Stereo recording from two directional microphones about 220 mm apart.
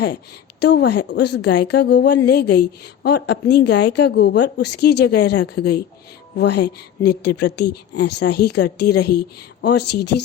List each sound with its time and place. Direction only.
0.6 s a woman's voice: 50° left (ahead or behind)